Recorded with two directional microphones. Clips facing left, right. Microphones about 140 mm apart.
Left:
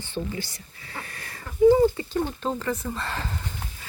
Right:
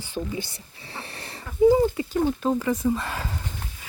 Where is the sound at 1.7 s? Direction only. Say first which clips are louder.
Left 1 dB; 10° right (ahead or behind).